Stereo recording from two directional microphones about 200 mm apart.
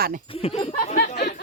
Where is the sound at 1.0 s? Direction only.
45° left (ahead or behind).